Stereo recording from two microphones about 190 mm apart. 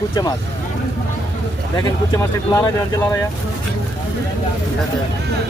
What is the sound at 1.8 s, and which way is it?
Speech, 20° left (ahead or behind).